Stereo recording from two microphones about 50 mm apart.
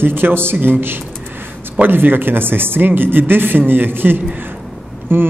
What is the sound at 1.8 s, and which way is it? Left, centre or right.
A man's voice, right.